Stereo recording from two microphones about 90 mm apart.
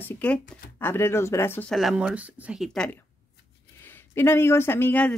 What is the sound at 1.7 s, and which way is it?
Speech, centre (ahead or behind).